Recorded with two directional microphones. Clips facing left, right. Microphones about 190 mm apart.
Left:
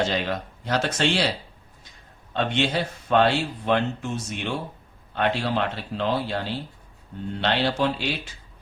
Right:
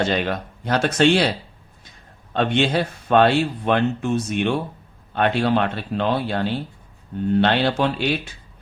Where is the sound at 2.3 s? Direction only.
60° right (ahead or behind).